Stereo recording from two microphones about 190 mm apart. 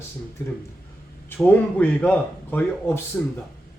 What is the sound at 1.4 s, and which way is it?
A man's voice, 5° left (ahead or behind).